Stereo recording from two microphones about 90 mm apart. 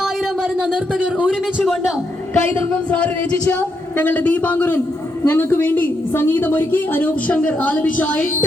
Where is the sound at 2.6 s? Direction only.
15° left (ahead or behind).